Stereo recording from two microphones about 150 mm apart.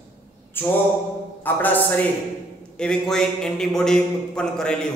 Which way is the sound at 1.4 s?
10° left (ahead or behind).